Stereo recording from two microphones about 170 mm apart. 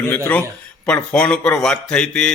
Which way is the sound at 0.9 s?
5° left (ahead or behind).